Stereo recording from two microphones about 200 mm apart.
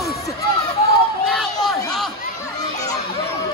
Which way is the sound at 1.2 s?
Centre (ahead or behind).